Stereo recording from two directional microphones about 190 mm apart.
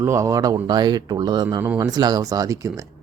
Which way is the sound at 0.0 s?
15° right (ahead or behind).